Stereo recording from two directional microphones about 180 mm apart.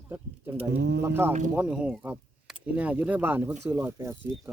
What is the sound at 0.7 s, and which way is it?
Speech, 70° right (ahead or behind).